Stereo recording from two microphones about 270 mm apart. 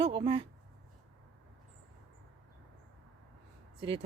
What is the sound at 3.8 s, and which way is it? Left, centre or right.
Speech, centre.